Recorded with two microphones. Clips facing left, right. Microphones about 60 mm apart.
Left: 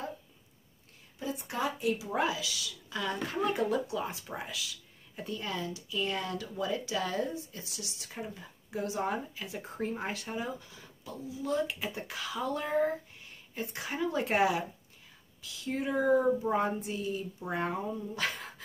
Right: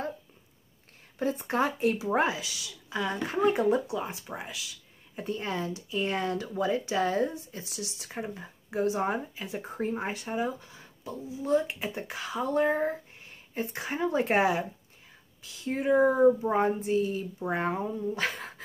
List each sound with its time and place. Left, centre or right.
1.2 s speech: right